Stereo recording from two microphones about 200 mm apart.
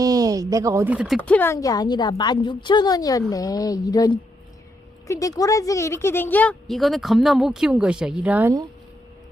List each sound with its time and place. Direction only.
0.0 s speech: 15° right (ahead or behind)